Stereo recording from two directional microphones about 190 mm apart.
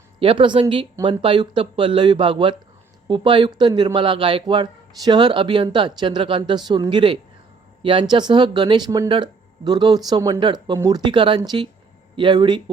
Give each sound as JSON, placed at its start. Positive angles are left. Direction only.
{"t": 0.2, "sound": "speech", "side_deg": -25}